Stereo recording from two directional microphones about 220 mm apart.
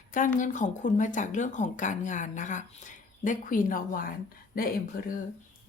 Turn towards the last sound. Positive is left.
turn(degrees=40)  # may be behind; listen again after turning